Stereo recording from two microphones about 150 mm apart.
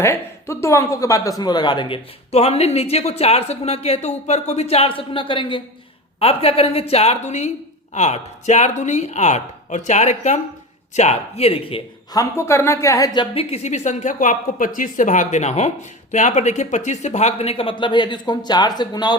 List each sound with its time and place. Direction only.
0.0 s a woman's voice: 15° left (ahead or behind)
2.3 s a woman's voice: 45° left (ahead or behind)
12.1 s a woman's voice: 20° left (ahead or behind)
13.1 s a woman's voice: 40° left (ahead or behind)